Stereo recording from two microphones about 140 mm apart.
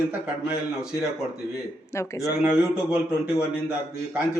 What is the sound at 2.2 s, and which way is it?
A man's voice, centre (ahead or behind).